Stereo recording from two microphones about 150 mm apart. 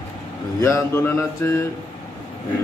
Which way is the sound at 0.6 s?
20° left (ahead or behind).